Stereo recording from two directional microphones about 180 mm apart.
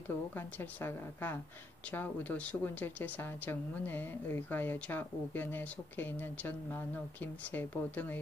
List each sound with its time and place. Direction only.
0.3 s speech: 10° left (ahead or behind)